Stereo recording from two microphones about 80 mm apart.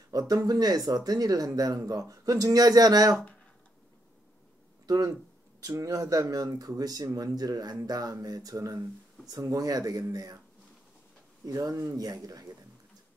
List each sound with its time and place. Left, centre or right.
0.1 s speech: right
4.8 s speech: right
11.4 s speech: right
12.0 s speech: right